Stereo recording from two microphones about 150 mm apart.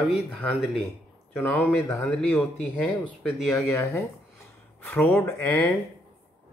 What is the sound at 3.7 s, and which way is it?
Speech, 20° left (ahead or behind).